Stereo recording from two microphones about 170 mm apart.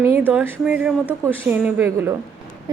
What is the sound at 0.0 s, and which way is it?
A woman's voice, 10° right (ahead or behind).